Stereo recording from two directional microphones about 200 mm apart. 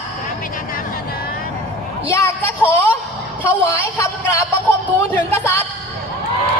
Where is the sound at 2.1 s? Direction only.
10° left (ahead or behind).